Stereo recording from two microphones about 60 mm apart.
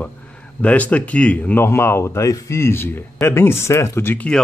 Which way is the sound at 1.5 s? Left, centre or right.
Left.